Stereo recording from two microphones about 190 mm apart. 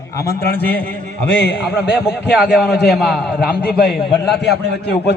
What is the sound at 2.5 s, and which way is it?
Speech, 5° right (ahead or behind).